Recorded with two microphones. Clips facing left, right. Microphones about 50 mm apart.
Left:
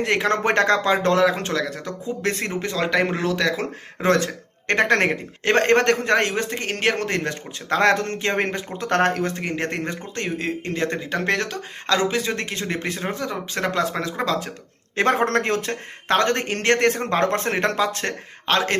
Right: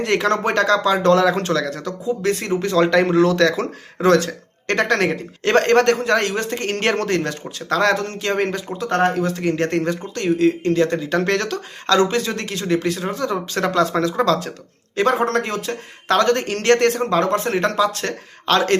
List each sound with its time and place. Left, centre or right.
0.0 s speech: centre
0.4 s speech: left
1.1 s speech: centre
1.8 s speech: left
2.7 s speech: centre
4.0 s speech: left; by 7.2 s centre
7.8 s speech: left
8.9 s speech: left
9.2 s speech: left
11.1 s speech: centre
14.9 s speech: left
16.0 s speech: left
17.1 s speech: left
18.4 s speech: centre